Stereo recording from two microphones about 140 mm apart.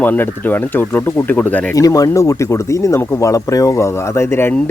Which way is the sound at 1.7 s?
25° left (ahead or behind).